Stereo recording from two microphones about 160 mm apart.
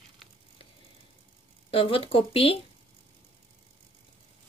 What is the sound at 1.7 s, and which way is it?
Speech, 35° left (ahead or behind).